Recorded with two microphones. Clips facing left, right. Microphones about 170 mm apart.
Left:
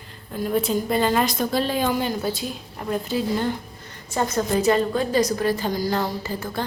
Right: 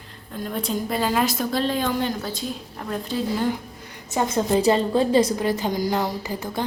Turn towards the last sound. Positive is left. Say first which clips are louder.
# even
turn(degrees=-15)  # may be behind; listen again after turning